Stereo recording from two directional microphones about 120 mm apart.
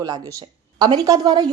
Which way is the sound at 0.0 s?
30° right (ahead or behind).